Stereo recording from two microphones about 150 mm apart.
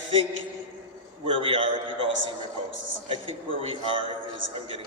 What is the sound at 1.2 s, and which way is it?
Speech, 35° right (ahead or behind).